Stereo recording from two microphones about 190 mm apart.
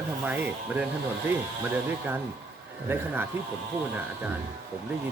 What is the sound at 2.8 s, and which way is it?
Speech, 10° right (ahead or behind).